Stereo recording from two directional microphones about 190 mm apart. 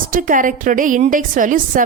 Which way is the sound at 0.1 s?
45° right (ahead or behind).